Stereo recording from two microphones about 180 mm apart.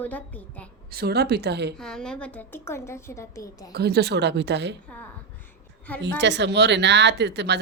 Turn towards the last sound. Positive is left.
turn(degrees=-70)  # may be behind; listen again after turning